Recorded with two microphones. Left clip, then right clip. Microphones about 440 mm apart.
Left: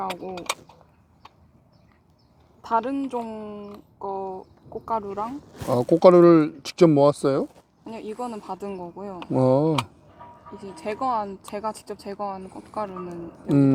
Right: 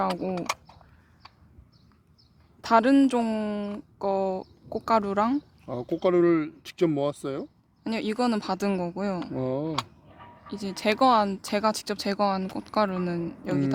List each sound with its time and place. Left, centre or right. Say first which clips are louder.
2.6 s a woman's voice: right 4 dB; right
5.6 s speech: left 12 dB; left
7.9 s a woman's voice: right 5 dB; right
9.3 s speech: left 10 dB; left
10.6 s a woman's voice: right 6 dB; right